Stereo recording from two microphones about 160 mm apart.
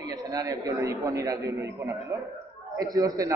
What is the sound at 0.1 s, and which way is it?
A man's voice, 20° right (ahead or behind).